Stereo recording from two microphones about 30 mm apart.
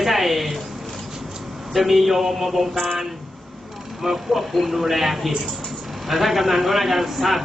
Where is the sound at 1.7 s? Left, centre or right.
Centre.